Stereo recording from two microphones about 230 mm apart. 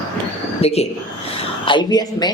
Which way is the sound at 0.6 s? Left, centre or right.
Left.